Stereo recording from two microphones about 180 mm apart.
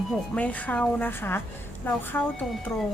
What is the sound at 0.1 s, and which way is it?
Speech, 10° left (ahead or behind).